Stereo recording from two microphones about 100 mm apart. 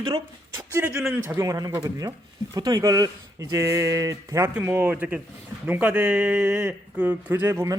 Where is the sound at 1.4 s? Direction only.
35° right (ahead or behind).